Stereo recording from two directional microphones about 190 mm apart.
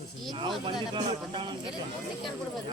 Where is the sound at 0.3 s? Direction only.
25° right (ahead or behind).